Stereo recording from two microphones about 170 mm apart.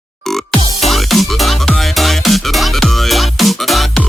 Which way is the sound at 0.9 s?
Centre (ahead or behind).